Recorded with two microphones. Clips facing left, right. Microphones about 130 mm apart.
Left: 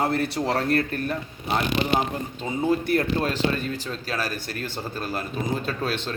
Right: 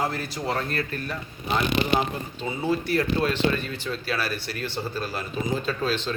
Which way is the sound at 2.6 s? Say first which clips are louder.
Left 2 dB; 50° left (ahead or behind).